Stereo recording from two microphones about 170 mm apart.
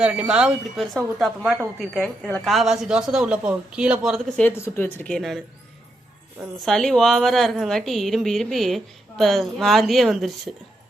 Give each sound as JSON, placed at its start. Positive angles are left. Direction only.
{"t": 0.0, "sound": "a woman's voice", "side_deg": -5}
{"t": 6.7, "sound": "a woman's voice", "side_deg": 0}